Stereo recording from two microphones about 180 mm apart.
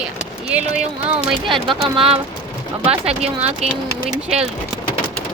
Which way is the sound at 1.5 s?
30° right (ahead or behind).